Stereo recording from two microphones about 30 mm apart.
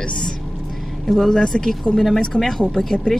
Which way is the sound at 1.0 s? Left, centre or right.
Centre.